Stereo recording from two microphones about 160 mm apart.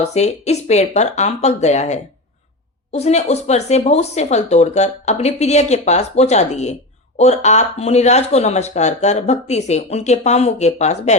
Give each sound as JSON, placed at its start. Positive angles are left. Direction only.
{"t": 0.0, "sound": "speech", "side_deg": 45}